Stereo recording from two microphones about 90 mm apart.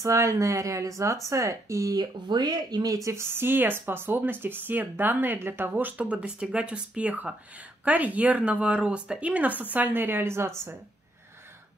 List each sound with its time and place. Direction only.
0.0 s speech: 35° right (ahead or behind)